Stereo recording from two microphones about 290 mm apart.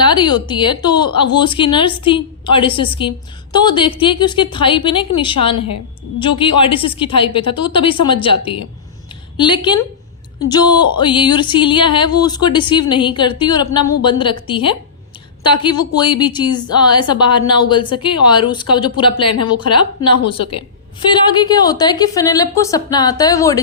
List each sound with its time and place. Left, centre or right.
0.0 s a woman's voice: centre